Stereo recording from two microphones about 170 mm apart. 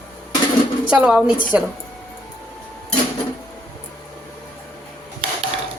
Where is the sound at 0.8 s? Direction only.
5° right (ahead or behind).